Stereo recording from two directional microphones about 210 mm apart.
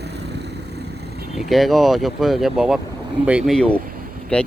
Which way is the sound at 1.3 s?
Centre (ahead or behind).